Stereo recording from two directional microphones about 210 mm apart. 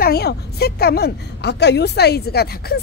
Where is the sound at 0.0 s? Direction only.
50° left (ahead or behind).